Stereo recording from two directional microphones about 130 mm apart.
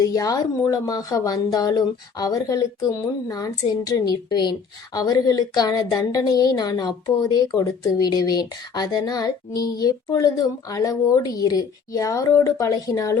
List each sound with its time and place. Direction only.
0.0 s a woman's voice: 25° left (ahead or behind)